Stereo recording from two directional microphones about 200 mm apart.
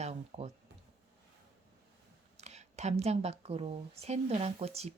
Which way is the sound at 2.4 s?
35° right (ahead or behind).